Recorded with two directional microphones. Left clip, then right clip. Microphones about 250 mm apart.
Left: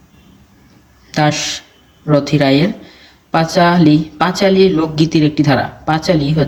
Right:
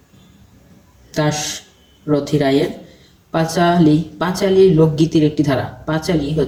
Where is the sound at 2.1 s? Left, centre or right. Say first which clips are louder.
Left 3 dB; left.